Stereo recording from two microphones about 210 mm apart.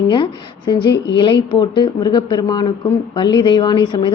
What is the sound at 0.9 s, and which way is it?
Speech, 55° left (ahead or behind).